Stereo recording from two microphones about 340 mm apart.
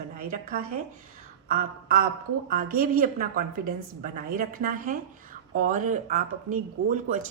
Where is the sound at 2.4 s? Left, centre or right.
Right.